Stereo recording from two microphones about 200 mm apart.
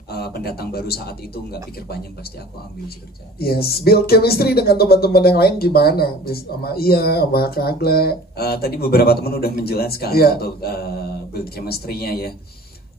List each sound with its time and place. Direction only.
0.1 s speech: 50° left (ahead or behind)
3.3 s speech: 50° left (ahead or behind)